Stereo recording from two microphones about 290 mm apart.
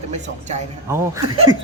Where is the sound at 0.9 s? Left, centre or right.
Centre.